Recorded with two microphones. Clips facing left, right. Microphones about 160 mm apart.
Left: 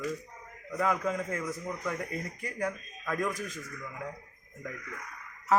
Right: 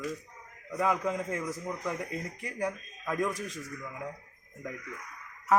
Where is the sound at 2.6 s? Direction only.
15° right (ahead or behind).